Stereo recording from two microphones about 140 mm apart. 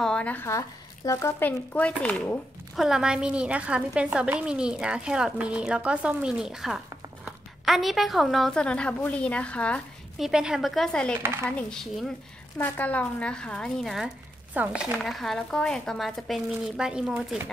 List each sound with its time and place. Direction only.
0.0 s speech: 10° left (ahead or behind)
1.4 s speech: 10° left (ahead or behind)
2.7 s a woman's voice: 5° right (ahead or behind)
10.2 s speech: 5° right (ahead or behind)
11.1 s a woman's voice: 15° right (ahead or behind)
11.5 s speech: 5° left (ahead or behind)
12.5 s speech: 15° left (ahead or behind); by 17.5 s 10° right (ahead or behind)